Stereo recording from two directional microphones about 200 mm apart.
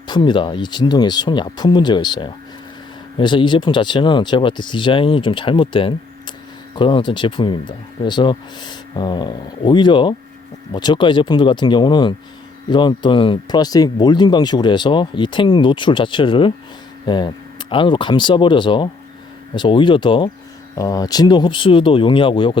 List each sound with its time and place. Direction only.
0.1 s speech: 25° left (ahead or behind)